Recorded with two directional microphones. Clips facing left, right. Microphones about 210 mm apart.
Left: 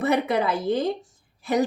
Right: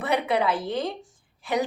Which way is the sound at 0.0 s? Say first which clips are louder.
Left 2 dB; 45° left (ahead or behind).